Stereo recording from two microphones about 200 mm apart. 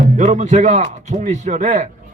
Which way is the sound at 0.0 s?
40° right (ahead or behind).